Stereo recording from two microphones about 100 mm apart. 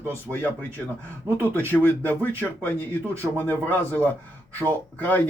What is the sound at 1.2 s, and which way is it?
Speech, 20° right (ahead or behind).